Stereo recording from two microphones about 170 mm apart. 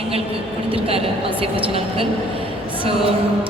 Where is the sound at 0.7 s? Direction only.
35° right (ahead or behind).